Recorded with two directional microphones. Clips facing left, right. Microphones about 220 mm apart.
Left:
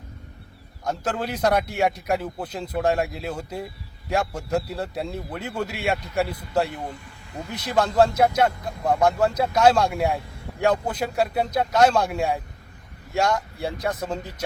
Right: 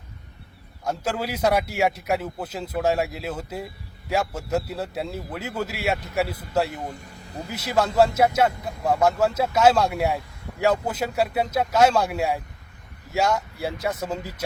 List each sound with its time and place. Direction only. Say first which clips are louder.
0.9 s a man's voice: even; 5° right (ahead or behind)
6.9 s speech: even; 40° right (ahead or behind)
7.5 s a man's voice: even; 5° right (ahead or behind)